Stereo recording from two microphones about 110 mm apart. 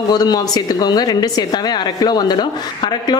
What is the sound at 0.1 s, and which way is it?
A woman's voice, 35° left (ahead or behind).